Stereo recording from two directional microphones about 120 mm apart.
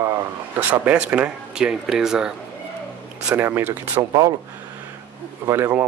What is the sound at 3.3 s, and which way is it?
Speech, 20° right (ahead or behind).